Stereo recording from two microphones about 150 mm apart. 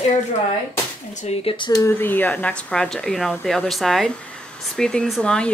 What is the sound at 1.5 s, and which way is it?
Speech, 30° left (ahead or behind).